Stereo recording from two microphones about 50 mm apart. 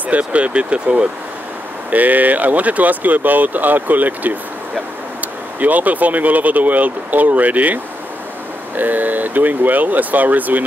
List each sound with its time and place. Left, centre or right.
0.1 s speech: right
1.9 s speech: right